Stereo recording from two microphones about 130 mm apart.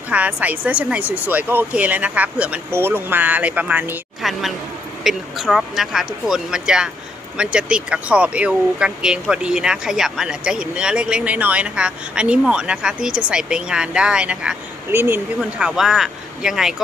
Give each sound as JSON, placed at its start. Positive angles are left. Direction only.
{"t": 0.1, "sound": "speech", "side_deg": -10}
{"t": 4.2, "sound": "a woman's voice", "side_deg": 0}
{"t": 15.4, "sound": "speech", "side_deg": -5}